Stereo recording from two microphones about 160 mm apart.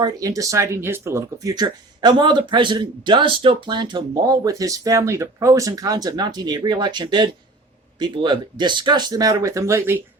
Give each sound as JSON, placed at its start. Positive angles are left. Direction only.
{"t": 0.0, "sound": "speech", "side_deg": -20}